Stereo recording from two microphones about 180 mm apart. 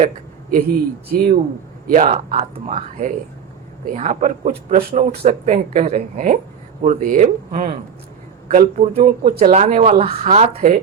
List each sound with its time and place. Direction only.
0.5 s speech: 55° right (ahead or behind)
1.9 s speech: 40° right (ahead or behind)